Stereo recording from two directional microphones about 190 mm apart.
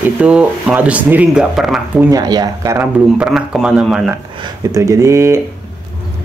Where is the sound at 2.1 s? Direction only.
20° right (ahead or behind).